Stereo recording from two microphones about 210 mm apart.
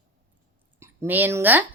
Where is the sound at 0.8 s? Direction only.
10° right (ahead or behind).